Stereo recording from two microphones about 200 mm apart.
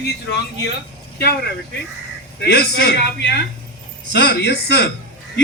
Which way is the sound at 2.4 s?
55° left (ahead or behind).